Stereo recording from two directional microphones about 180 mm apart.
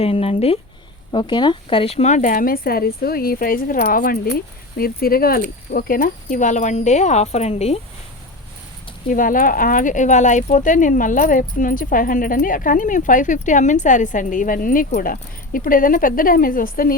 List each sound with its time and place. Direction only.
0.0 s speech: 35° left (ahead or behind)
9.0 s speech: 50° left (ahead or behind)